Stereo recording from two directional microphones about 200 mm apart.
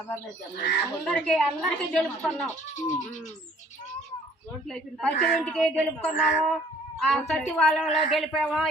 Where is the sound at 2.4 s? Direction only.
35° left (ahead or behind).